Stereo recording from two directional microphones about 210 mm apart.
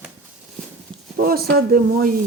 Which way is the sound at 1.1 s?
45° right (ahead or behind).